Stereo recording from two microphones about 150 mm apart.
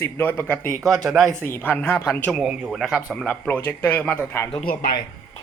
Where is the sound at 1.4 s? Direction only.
15° left (ahead or behind).